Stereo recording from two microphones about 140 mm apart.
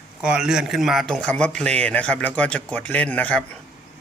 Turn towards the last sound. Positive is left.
turn(degrees=10)  # may be behind; listen again after turning